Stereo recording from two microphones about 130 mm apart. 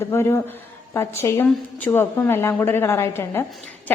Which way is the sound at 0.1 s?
20° left (ahead or behind).